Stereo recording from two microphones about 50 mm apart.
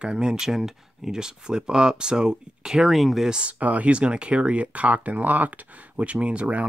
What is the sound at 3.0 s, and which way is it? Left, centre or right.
Speech, centre.